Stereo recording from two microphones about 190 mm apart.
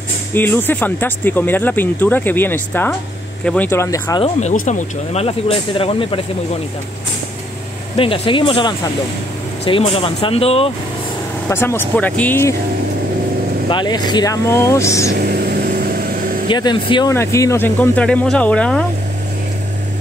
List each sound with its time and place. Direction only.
0.3 s speech: 10° left (ahead or behind)
4.2 s speech: 35° left (ahead or behind)
8.0 s speech: 25° left (ahead or behind)
11.4 s speech: 10° left (ahead or behind)
13.7 s speech: 25° left (ahead or behind)
15.1 s vehicle: 55° right (ahead or behind)
16.4 s speech: 25° left (ahead or behind); by 18.9 s 5° left (ahead or behind)